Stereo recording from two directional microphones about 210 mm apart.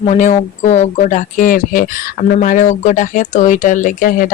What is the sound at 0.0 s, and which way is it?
Speech, 35° left (ahead or behind).